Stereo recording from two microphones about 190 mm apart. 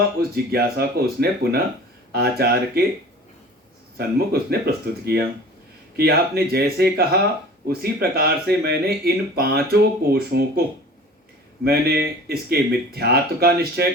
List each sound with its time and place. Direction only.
0.2 s speech: 55° right (ahead or behind)
3.9 s speech: 55° right (ahead or behind)
11.6 s speech: 55° right (ahead or behind)